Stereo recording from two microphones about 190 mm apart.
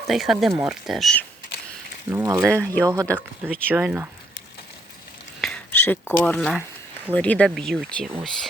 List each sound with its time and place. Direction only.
0.1 s speech: centre (ahead or behind)
2.0 s speech: 10° right (ahead or behind)
5.4 s a sound: 5° left (ahead or behind)
7.1 s speech: 5° left (ahead or behind)